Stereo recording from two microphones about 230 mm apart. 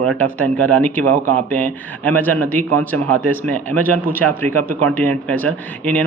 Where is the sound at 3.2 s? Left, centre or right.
Centre.